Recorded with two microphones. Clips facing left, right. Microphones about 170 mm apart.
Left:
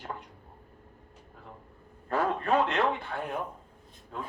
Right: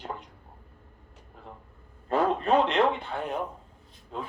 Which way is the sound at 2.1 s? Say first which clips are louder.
Right 3 dB; 20° right (ahead or behind).